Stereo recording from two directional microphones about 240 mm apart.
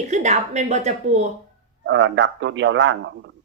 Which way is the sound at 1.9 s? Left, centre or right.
Right.